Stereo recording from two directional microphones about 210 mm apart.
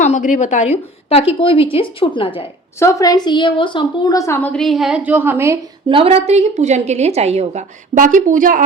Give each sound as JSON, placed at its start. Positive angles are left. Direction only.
{"t": 0.0, "sound": "a woman's voice", "side_deg": 35}
{"t": 2.7, "sound": "a woman's voice", "side_deg": 15}
{"t": 5.9, "sound": "a woman's voice", "side_deg": -25}